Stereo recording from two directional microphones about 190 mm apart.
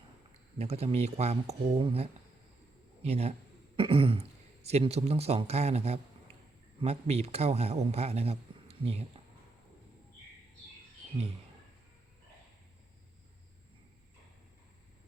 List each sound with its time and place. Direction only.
0.6 s a man's voice: 30° right (ahead or behind)